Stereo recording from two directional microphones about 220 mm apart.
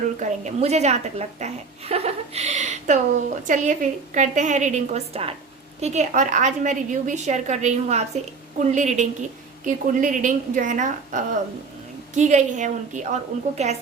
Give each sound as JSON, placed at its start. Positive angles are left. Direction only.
{"t": 0.2, "sound": "a woman's voice", "side_deg": -30}